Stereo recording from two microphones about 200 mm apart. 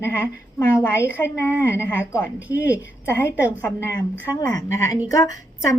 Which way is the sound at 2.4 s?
10° right (ahead or behind).